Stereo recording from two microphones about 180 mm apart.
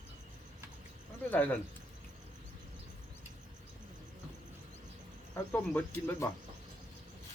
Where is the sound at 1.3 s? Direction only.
10° left (ahead or behind).